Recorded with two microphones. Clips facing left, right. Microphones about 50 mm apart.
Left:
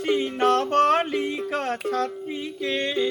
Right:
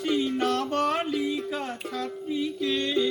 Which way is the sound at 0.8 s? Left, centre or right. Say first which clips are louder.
Left 5 dB; left.